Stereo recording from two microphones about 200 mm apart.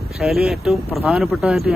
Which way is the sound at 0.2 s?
Centre (ahead or behind).